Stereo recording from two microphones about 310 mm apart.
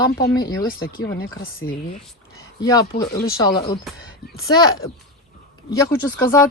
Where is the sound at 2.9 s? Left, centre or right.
Left.